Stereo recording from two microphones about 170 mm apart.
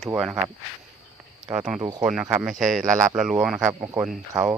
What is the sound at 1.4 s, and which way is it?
Speech, 5° right (ahead or behind).